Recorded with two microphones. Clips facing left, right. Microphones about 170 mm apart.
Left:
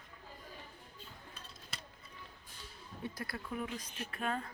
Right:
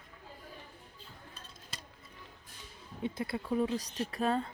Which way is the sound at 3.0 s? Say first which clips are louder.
Right 7 dB; 25° right (ahead or behind).